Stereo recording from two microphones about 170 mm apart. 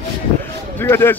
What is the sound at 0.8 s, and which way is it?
Speech, 15° left (ahead or behind).